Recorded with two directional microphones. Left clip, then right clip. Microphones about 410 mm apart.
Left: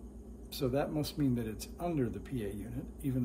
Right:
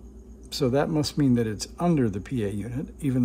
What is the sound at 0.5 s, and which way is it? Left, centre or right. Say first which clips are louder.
Speech: right 10 dB; centre.